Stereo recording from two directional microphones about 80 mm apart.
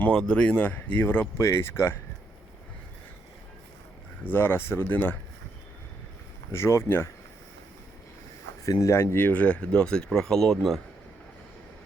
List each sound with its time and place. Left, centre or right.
0.2 s speech: centre; by 2.0 s left
4.2 s speech: left
6.5 s speech: left
8.6 s speech: left; by 10.8 s centre